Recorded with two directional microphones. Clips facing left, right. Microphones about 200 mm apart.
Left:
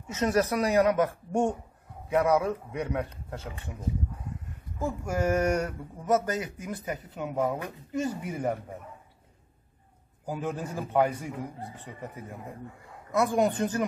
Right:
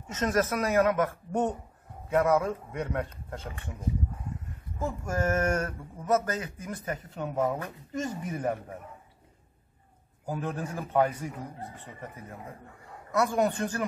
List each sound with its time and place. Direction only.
0.1 s speech: 15° left (ahead or behind)
4.8 s speech: 10° left (ahead or behind)
10.2 s speech: 10° left (ahead or behind)